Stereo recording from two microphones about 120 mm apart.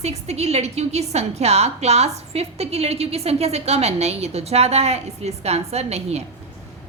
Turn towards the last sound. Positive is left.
turn(degrees=-60)  # may be behind; listen again after turning